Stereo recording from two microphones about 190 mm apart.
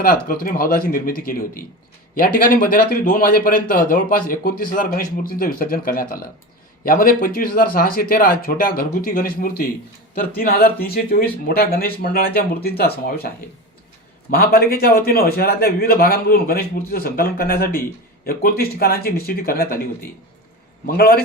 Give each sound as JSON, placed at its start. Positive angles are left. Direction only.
{"t": 0.0, "sound": "a man's voice", "side_deg": 50}
{"t": 14.3, "sound": "a man's voice", "side_deg": 50}
{"t": 20.8, "sound": "a man's voice", "side_deg": 50}